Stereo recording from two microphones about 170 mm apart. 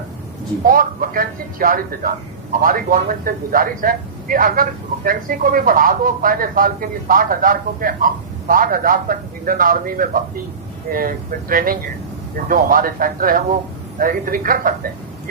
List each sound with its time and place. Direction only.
0.6 s speech: 55° right (ahead or behind)